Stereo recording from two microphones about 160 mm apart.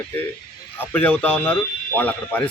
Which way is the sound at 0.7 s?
10° left (ahead or behind).